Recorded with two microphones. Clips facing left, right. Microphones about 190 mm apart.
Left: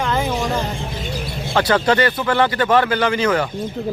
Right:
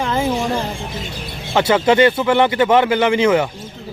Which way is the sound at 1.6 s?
20° right (ahead or behind).